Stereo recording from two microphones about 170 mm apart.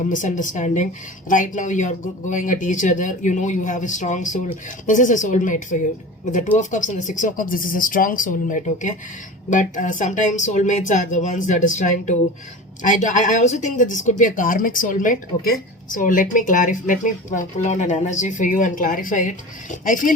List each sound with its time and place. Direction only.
0.1 s speech: 50° left (ahead or behind)